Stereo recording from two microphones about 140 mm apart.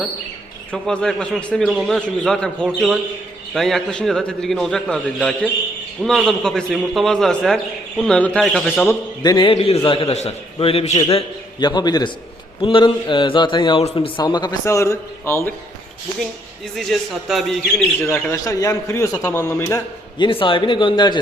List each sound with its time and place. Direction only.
0.7 s a man's voice: 5° left (ahead or behind)
8.9 s speech: 25° left (ahead or behind)
9.5 s a man's voice: 40° left (ahead or behind)
11.6 s speech: 30° left (ahead or behind)
16.7 s a man's voice: centre (ahead or behind)
18.0 s speech: 20° left (ahead or behind)
20.1 s speech: 35° left (ahead or behind)